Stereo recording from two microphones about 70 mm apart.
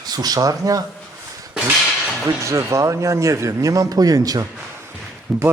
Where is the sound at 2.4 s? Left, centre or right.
Right.